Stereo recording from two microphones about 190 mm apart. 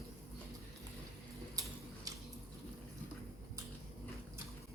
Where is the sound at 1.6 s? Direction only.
20° right (ahead or behind).